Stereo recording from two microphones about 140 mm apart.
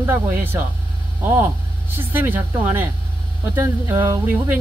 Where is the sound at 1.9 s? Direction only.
15° right (ahead or behind).